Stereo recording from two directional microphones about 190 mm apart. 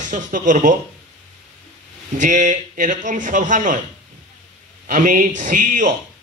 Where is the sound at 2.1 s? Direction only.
40° right (ahead or behind).